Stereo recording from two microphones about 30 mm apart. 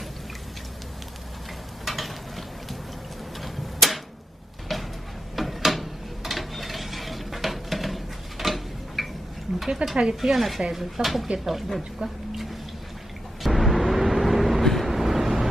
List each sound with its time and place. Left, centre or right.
1.8 s stir: centre
3.3 s a sound: centre
5.4 s mechanisms: centre
9.6 s speech: centre
10.2 s speech: centre
11.9 s a sound: centre
13.4 s vehicle: centre
14.6 s vehicle: centre
14.8 s vehicle: centre